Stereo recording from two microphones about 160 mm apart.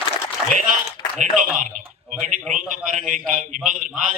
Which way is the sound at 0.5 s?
55° right (ahead or behind).